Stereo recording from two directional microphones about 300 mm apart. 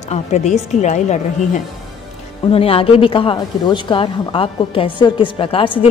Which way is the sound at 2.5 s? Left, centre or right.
Centre.